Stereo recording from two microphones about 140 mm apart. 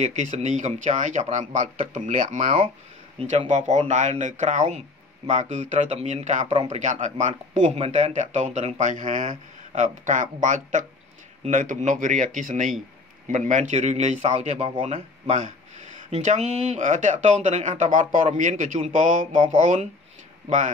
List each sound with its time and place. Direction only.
0.0 s speech: 60° right (ahead or behind)
7.7 s speech: 45° right (ahead or behind)